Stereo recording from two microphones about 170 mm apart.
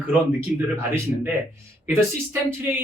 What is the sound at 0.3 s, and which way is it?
Speech, 15° right (ahead or behind).